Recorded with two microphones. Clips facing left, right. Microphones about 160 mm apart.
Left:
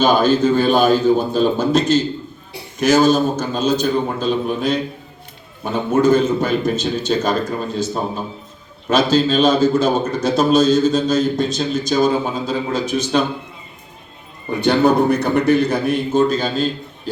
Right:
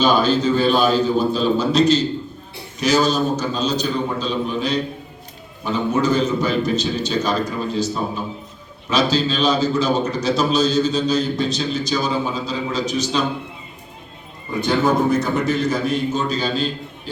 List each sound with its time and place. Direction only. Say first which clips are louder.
0.0 s a man's voice: left 3 dB; 50° left (ahead or behind)
14.6 s a man's voice: left 4 dB; 65° left (ahead or behind); by 16.6 s 50° left (ahead or behind)